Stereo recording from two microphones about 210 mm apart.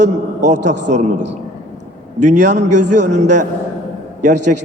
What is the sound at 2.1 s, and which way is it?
A man's voice, 35° right (ahead or behind).